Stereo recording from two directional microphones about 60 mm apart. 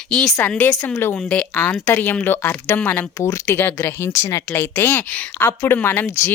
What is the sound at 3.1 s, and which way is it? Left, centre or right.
Speech, left.